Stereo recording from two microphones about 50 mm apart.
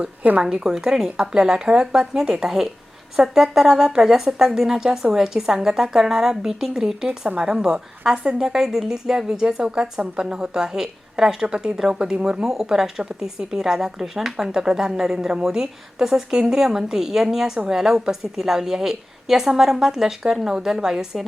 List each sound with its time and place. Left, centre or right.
0.2 s a woman's voice: right
0.5 s speech: centre